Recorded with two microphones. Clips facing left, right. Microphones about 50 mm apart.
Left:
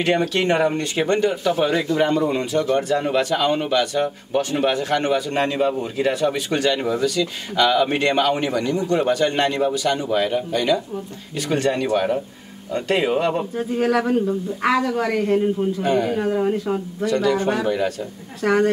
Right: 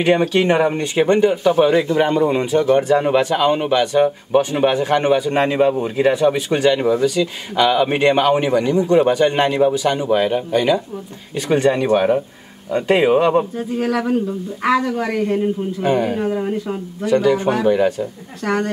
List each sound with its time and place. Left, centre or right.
0.0 s speech: centre
13.6 s a man's voice: centre
15.9 s speech: centre
16.2 s a man's voice: centre
17.0 s speech: centre
18.4 s a man's voice: centre